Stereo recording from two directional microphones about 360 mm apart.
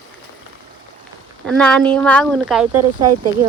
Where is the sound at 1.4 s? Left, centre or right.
Centre.